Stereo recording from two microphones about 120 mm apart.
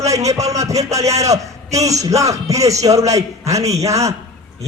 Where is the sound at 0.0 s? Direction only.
25° right (ahead or behind).